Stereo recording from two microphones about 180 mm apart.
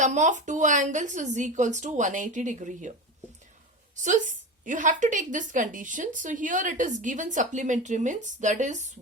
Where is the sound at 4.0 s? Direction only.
45° right (ahead or behind).